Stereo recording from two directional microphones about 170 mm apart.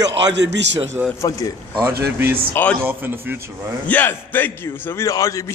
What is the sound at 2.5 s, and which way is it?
Speech, 10° left (ahead or behind).